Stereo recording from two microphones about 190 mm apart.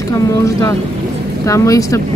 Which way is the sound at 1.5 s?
15° left (ahead or behind).